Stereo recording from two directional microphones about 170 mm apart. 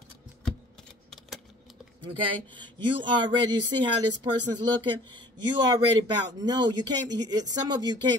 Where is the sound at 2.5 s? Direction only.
25° right (ahead or behind).